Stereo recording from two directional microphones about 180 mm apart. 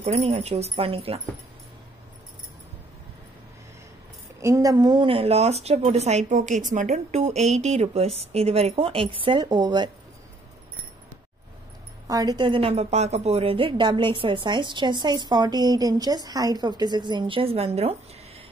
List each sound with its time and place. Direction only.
0.0 s a woman's voice: 35° right (ahead or behind)
4.4 s a woman's voice: 15° right (ahead or behind)
12.1 s a woman's voice: 20° right (ahead or behind)